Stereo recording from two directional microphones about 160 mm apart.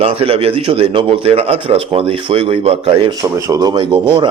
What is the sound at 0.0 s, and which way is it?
Speech, 35° right (ahead or behind).